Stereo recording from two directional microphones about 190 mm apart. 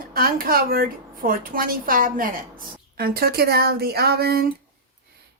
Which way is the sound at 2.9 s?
55° right (ahead or behind).